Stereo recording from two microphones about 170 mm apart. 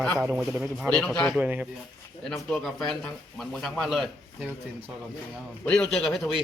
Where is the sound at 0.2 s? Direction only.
5° right (ahead or behind).